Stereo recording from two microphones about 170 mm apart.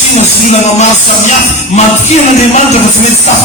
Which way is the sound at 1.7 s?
40° left (ahead or behind).